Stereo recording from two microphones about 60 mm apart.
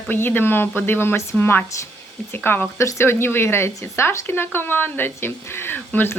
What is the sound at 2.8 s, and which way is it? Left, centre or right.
Speech, left.